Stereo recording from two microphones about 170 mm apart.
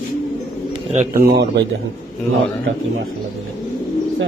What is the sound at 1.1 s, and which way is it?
Speech, 65° right (ahead or behind).